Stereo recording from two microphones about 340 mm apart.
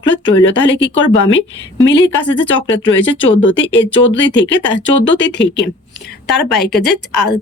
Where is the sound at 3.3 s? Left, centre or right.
Left.